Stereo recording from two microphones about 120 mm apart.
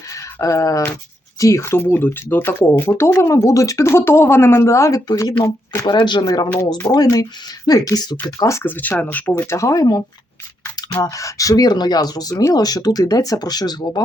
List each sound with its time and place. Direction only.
0.1 s a sound: 25° left (ahead or behind)
1.4 s speech: 25° left (ahead or behind)
11.0 s speech: 25° left (ahead or behind)